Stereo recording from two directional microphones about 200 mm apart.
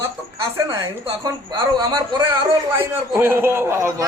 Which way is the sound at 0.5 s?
20° right (ahead or behind).